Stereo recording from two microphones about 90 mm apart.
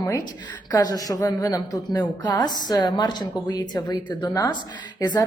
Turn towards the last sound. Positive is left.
turn(degrees=50)  # may be behind; listen again after turning